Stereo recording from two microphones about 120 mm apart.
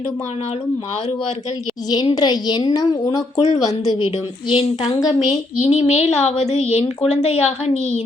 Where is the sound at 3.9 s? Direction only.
65° left (ahead or behind).